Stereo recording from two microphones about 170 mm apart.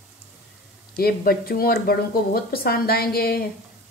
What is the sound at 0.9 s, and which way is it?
Speech, 60° left (ahead or behind).